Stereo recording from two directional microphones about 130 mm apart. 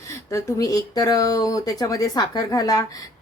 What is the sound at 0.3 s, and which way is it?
Speech, 25° left (ahead or behind).